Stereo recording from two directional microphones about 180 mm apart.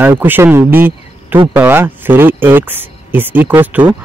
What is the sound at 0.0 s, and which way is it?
Speech, 10° right (ahead or behind).